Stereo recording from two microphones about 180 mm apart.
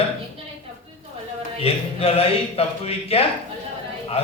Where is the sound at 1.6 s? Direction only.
35° left (ahead or behind).